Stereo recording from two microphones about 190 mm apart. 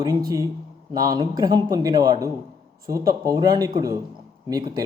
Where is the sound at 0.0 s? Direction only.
20° right (ahead or behind).